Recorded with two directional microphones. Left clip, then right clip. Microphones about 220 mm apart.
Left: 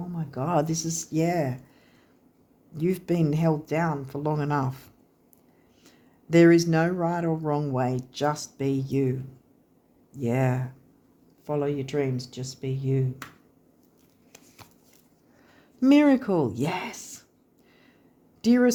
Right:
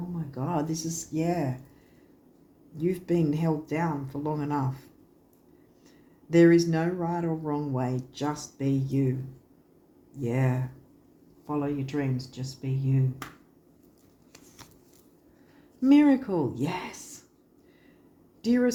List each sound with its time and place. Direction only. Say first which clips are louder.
0.3 s speech: left 5 dB; 45° left (ahead or behind)
2.7 s speech: left 1 dB; 45° left (ahead or behind)
6.3 s speech: left 2 dB; 45° left (ahead or behind)
10.2 s speech: left 3 dB; 45° left (ahead or behind)
14.3 s a sound: even; 10° left (ahead or behind)
15.8 s speech: left 2 dB; 45° left (ahead or behind)
18.4 s speech: left 4 dB; 45° left (ahead or behind)